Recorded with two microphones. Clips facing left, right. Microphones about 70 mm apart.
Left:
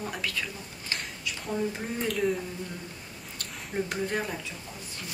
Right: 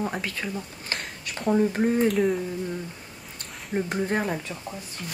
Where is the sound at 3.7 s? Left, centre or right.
Centre.